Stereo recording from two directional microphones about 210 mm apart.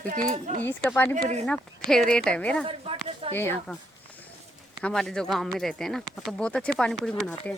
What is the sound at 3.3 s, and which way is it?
Speech, 10° left (ahead or behind).